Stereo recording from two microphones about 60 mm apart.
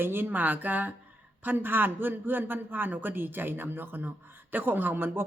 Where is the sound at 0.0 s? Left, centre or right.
Right.